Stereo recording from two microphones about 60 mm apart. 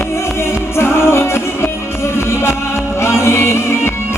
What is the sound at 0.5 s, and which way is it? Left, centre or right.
Music, left.